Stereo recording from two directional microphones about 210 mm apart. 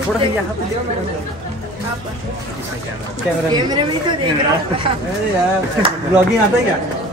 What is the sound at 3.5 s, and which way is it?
Speech, 20° right (ahead or behind).